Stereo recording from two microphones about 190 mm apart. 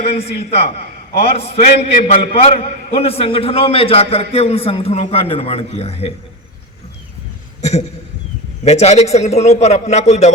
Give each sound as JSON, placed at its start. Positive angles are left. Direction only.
{"t": 0.0, "sound": "a man's voice", "side_deg": 30}
{"t": 7.6, "sound": "a man's voice", "side_deg": 35}